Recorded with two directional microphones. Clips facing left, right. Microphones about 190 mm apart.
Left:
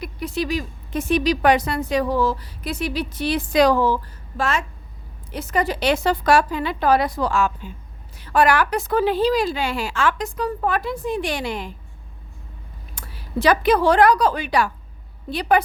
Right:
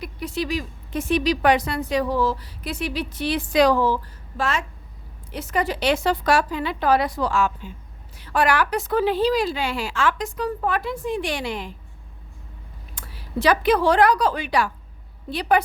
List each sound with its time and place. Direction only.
0.0 s speech: 45° left (ahead or behind)
13.0 s a woman's voice: 45° left (ahead or behind)